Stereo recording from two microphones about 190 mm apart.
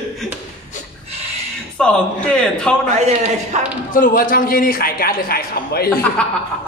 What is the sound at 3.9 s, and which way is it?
A man's voice, 45° left (ahead or behind).